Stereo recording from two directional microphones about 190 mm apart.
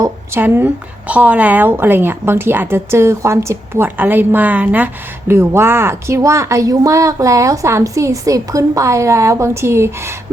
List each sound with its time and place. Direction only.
0.0 s speech: 10° right (ahead or behind)